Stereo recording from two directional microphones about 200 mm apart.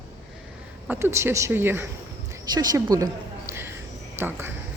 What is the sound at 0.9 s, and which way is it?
A woman's voice, 15° right (ahead or behind).